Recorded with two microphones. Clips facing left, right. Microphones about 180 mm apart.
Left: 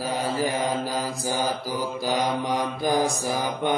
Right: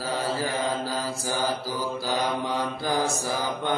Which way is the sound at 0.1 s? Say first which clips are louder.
Left 1 dB; 15° left (ahead or behind).